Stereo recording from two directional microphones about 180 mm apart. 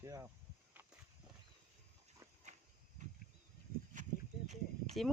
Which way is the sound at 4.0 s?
45° right (ahead or behind).